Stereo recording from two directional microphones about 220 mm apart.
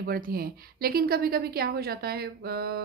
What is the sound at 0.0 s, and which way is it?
A woman's voice, 45° right (ahead or behind).